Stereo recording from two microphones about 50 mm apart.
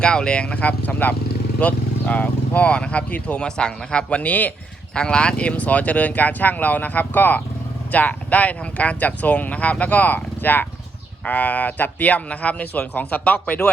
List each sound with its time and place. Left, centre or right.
0.0 s speech: centre; by 4.5 s left
4.9 s speech: centre